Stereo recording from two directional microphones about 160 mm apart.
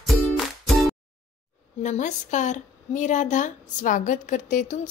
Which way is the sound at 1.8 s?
50° left (ahead or behind).